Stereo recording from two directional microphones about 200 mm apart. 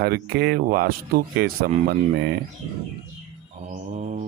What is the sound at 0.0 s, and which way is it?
Speech, 50° right (ahead or behind).